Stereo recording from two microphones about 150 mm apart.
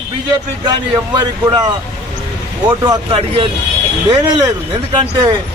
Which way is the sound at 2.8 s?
25° right (ahead or behind).